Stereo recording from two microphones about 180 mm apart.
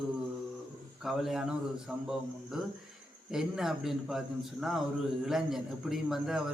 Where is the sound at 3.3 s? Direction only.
5° right (ahead or behind).